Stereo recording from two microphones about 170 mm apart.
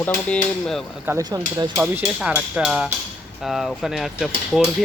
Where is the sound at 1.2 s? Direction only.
25° right (ahead or behind).